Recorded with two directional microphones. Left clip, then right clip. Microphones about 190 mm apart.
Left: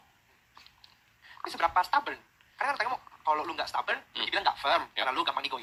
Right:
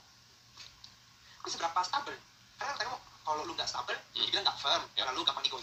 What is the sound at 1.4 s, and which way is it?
Speech, 25° left (ahead or behind).